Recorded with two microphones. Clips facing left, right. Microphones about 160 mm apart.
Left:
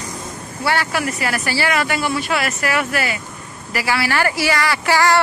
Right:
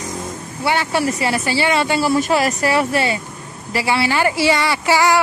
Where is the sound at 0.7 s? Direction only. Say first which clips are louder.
Right 2 dB; 20° right (ahead or behind).